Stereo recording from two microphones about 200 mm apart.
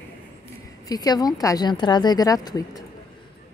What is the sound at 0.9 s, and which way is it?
A woman's voice, 20° left (ahead or behind).